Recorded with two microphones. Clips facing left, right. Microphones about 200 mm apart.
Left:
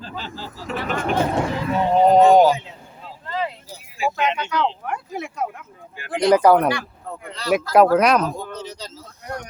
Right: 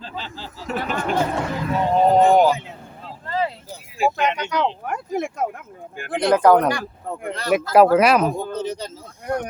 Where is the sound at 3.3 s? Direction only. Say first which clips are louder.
Right 2 dB; 35° right (ahead or behind).